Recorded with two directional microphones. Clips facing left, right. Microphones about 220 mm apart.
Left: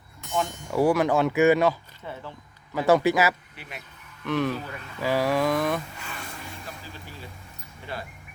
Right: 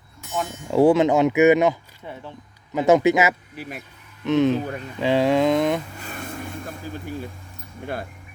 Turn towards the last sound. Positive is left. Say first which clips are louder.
# right 7 dB
turn(degrees=-50)  # may be behind; listen again after turning